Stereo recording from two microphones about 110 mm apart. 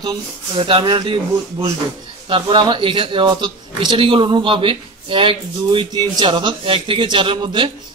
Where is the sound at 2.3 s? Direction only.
50° right (ahead or behind).